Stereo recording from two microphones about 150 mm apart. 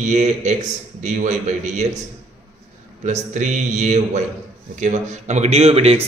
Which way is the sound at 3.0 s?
55° right (ahead or behind).